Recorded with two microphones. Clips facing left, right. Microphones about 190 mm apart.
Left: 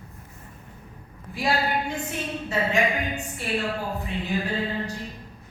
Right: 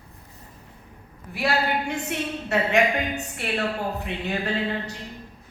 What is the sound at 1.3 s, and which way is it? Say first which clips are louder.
A woman's voice: right 1 dB; 70° right (ahead or behind).